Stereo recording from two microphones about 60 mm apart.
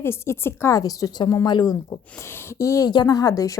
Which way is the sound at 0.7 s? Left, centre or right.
Left.